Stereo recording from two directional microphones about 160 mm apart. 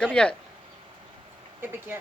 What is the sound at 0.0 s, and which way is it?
Speech, 5° left (ahead or behind).